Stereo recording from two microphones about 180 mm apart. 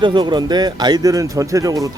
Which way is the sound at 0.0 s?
25° right (ahead or behind).